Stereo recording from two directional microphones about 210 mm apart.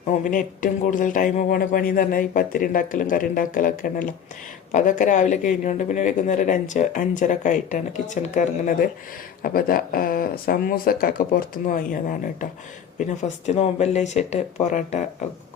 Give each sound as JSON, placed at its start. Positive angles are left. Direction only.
{"t": 0.3, "sound": "speech", "side_deg": 40}
{"t": 13.0, "sound": "speech", "side_deg": 35}